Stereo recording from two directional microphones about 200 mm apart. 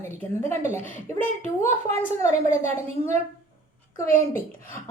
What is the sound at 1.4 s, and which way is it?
Speech, 30° right (ahead or behind).